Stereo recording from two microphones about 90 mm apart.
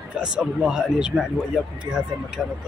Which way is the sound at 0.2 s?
10° right (ahead or behind).